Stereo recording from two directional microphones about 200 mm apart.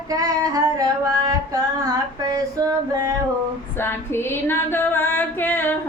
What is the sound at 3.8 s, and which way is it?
Female singing, 10° left (ahead or behind).